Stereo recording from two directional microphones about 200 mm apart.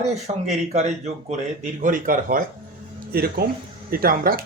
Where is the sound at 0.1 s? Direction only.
35° right (ahead or behind).